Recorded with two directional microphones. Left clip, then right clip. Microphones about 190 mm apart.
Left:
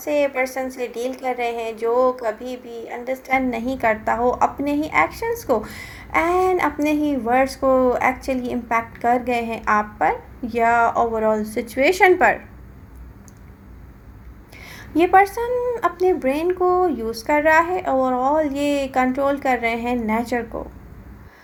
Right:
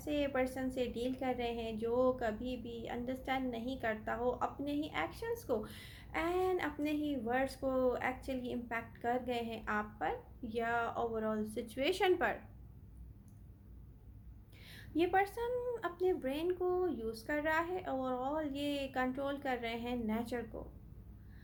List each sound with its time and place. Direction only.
0.0 s a woman's voice: 15° left (ahead or behind)
14.6 s a woman's voice: 15° left (ahead or behind)